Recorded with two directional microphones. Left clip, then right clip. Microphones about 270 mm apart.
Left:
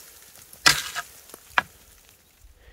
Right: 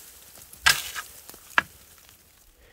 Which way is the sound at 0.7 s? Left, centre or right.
Left.